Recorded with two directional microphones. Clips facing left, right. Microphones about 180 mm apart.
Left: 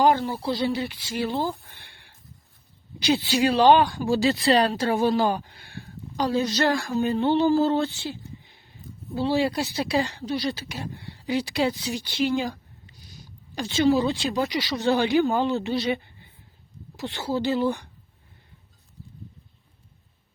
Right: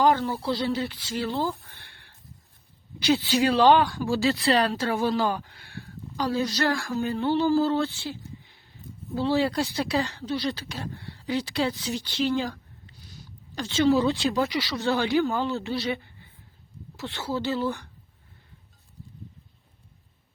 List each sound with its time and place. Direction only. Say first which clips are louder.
0.0 s speech: left 1 dB; 15° left (ahead or behind)
13.6 s speech: left 1 dB; 10° left (ahead or behind)